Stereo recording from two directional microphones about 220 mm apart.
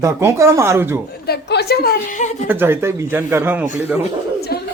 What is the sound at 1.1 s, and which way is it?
Speech, 45° left (ahead or behind).